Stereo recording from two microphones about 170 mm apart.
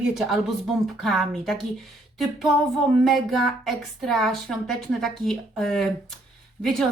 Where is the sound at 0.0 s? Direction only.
Centre (ahead or behind).